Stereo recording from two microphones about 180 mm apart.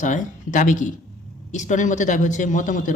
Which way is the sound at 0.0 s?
45° left (ahead or behind).